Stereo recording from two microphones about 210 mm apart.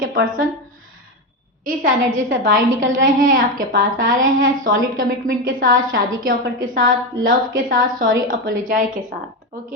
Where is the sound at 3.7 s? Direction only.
40° right (ahead or behind).